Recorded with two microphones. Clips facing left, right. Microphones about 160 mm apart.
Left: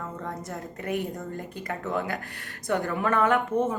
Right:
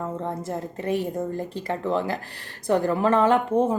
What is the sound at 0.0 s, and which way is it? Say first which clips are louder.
A woman's voice: right 6 dB; 25° right (ahead or behind).